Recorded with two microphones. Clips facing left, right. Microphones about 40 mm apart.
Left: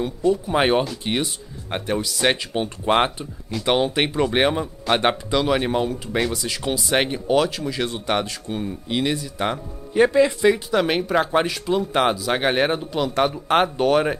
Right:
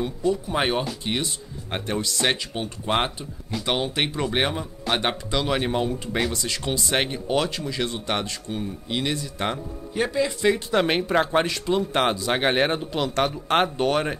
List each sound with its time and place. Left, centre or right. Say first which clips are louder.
0.0 s speech: left 3 dB; centre
2.3 s speech: left 5 dB; centre
9.9 s speech: left 8 dB; centre
10.4 s speech: left 3 dB; centre